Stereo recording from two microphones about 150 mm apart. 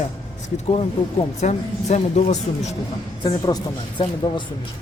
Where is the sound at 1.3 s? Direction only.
50° left (ahead or behind).